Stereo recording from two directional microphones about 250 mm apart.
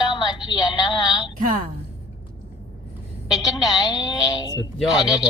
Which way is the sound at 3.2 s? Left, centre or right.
Centre.